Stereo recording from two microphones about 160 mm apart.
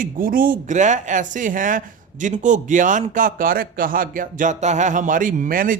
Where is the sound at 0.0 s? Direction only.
60° right (ahead or behind).